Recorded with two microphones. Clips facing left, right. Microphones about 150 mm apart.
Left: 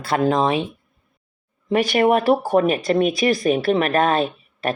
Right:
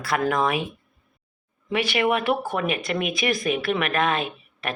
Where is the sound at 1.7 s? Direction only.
40° left (ahead or behind).